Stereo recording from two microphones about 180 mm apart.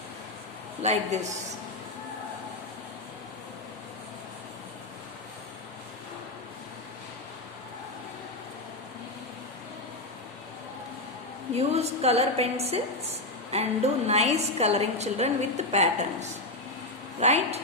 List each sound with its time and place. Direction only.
0.8 s a woman's voice: 40° right (ahead or behind)
11.5 s a woman's voice: 35° right (ahead or behind)